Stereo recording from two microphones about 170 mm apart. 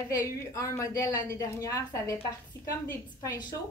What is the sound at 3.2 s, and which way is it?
Speech, 20° left (ahead or behind).